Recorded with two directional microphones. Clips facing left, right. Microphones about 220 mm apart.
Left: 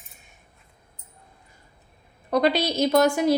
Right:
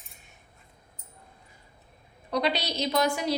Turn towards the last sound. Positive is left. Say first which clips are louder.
# left 7 dB
turn(degrees=50)  # may be behind; listen again after turning